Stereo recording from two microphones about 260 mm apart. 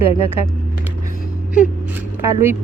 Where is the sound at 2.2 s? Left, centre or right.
Centre.